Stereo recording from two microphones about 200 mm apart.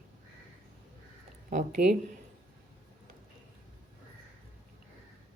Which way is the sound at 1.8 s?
45° right (ahead or behind).